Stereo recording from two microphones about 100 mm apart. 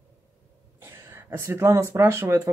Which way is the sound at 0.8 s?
25° right (ahead or behind).